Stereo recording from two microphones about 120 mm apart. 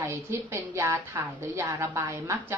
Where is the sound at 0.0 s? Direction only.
25° right (ahead or behind).